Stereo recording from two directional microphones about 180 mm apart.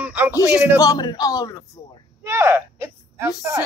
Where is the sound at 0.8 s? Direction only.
20° left (ahead or behind).